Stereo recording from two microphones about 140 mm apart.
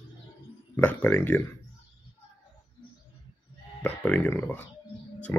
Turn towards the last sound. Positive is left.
turn(degrees=15)  # may be behind; listen again after turning